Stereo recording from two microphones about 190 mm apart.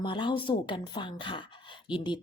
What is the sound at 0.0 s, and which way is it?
Speech, 25° left (ahead or behind).